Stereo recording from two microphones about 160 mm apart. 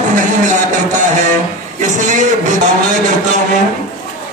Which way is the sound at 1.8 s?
50° right (ahead or behind).